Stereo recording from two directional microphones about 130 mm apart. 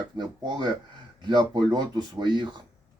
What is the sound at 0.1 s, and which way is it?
Speech, 35° right (ahead or behind).